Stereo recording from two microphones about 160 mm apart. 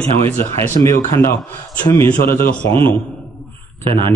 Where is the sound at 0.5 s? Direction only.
15° left (ahead or behind).